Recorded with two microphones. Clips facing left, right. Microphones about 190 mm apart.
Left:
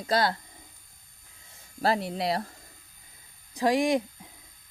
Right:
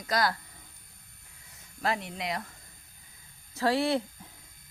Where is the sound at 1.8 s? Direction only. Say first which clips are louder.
Left 5 dB; 35° left (ahead or behind).